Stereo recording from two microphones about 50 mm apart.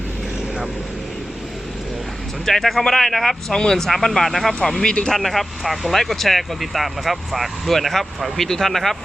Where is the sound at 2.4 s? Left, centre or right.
Centre.